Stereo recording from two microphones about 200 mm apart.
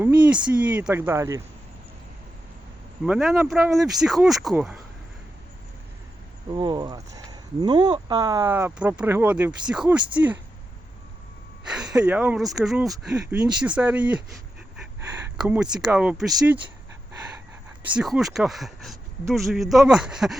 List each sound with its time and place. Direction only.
0.4 s speech: 5° right (ahead or behind)
3.0 s speech: centre (ahead or behind)
6.5 s speech: 20° right (ahead or behind); by 10.0 s 5° right (ahead or behind)
11.7 s speech: 5° right (ahead or behind)
15.4 s speech: 5° right (ahead or behind)
17.9 s speech: centre (ahead or behind)